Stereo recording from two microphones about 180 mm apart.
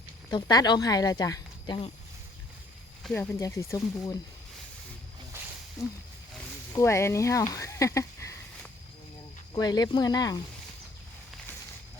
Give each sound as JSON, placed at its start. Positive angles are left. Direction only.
{"t": 0.3, "sound": "speech", "side_deg": 20}
{"t": 3.0, "sound": "speech", "side_deg": 5}
{"t": 3.3, "sound": "speech", "side_deg": 15}
{"t": 5.3, "sound": "a sound", "side_deg": -15}
{"t": 6.7, "sound": "speech", "side_deg": 15}
{"t": 9.5, "sound": "speech", "side_deg": 20}